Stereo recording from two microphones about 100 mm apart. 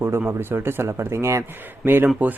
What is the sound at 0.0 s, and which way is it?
Speech, 25° right (ahead or behind).